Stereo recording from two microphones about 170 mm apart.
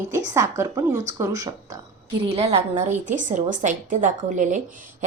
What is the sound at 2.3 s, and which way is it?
A woman's voice, 35° right (ahead or behind).